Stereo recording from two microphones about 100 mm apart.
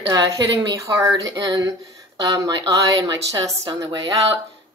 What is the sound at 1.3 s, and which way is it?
Speech, 45° right (ahead or behind).